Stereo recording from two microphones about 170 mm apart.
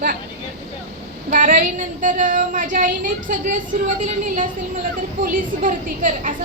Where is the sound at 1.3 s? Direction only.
50° right (ahead or behind).